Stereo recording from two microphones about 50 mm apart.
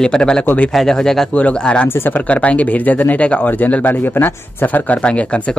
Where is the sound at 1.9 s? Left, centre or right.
Left.